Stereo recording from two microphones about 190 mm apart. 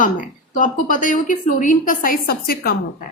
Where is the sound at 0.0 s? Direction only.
45° left (ahead or behind).